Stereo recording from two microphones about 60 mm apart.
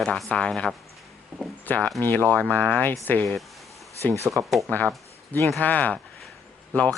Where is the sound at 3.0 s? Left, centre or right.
Left.